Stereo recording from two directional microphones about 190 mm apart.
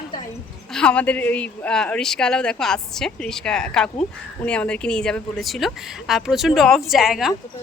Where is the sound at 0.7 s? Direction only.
5° left (ahead or behind).